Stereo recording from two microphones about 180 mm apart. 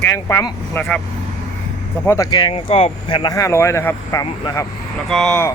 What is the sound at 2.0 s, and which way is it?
Speech, 20° left (ahead or behind).